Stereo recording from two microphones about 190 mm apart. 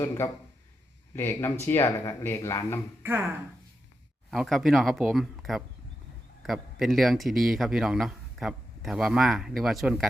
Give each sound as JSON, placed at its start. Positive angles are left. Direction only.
{"t": 0.0, "sound": "speech", "side_deg": 15}
{"t": 3.0, "sound": "speech", "side_deg": -10}
{"t": 4.3, "sound": "speech", "side_deg": 0}